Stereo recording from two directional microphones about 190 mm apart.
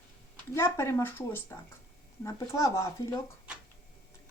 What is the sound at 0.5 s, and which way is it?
Speech, 15° left (ahead or behind).